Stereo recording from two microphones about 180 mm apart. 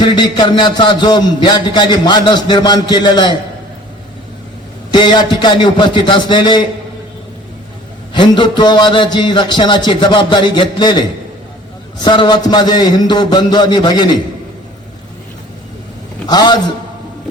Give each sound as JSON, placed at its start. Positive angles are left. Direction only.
{"t": 0.0, "sound": "a man's voice", "side_deg": 25}
{"t": 4.9, "sound": "a man's voice", "side_deg": 25}
{"t": 8.1, "sound": "a man's voice", "side_deg": 25}
{"t": 12.0, "sound": "a man's voice", "side_deg": 25}
{"t": 16.2, "sound": "a man's voice", "side_deg": 25}